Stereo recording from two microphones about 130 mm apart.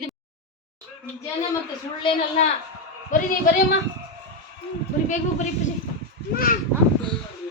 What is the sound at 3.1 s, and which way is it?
Speech, 90° left.